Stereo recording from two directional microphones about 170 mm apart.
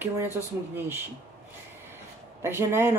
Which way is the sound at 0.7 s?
10° right (ahead or behind).